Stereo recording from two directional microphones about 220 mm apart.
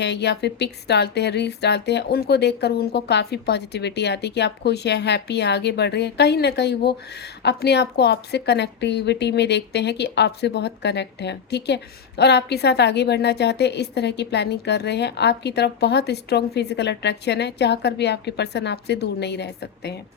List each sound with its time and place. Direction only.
0.0 s speech: 50° left (ahead or behind)